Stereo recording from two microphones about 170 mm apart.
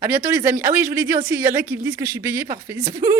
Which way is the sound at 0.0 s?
10° right (ahead or behind).